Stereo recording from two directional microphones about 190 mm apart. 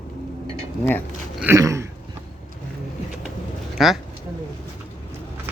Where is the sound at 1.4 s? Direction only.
15° right (ahead or behind).